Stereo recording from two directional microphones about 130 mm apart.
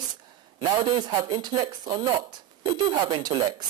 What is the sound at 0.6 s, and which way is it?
Speech, 35° right (ahead or behind).